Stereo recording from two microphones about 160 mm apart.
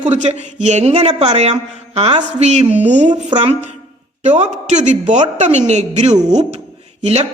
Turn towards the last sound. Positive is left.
turn(degrees=-40)  # may be behind; listen again after turning